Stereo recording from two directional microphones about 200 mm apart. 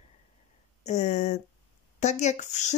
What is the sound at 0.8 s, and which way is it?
Speech, 35° left (ahead or behind).